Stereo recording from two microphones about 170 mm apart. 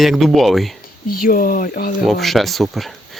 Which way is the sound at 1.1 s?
55° left (ahead or behind).